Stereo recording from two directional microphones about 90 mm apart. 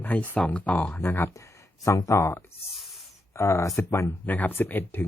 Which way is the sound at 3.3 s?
35° left (ahead or behind).